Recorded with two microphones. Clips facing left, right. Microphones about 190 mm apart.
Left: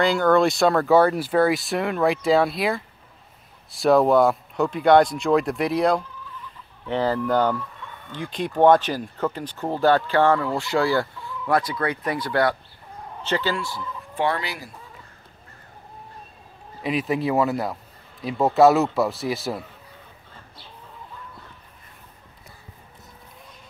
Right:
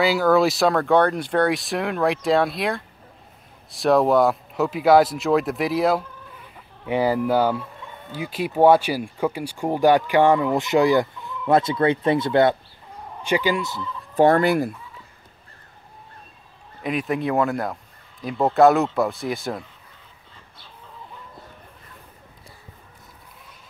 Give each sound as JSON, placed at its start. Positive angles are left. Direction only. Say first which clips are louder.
{"t": 0.0, "sound": "speech", "louder": "even", "side_deg": -5}
{"t": 14.1, "sound": "speech", "louder": "right 9 dB", "side_deg": -45}
{"t": 16.8, "sound": "speech", "louder": "even", "side_deg": 0}